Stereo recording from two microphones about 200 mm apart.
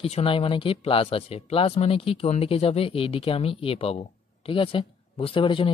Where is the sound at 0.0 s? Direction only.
25° left (ahead or behind).